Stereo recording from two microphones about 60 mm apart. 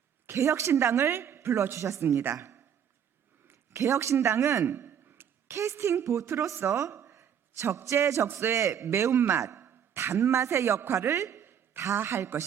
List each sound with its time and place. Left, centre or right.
0.3 s a woman's voice: right
3.4 s a sound: right
3.8 s a man's voice: right
5.5 s speech: right
6.7 s a sound: right
7.9 s a woman's voice: right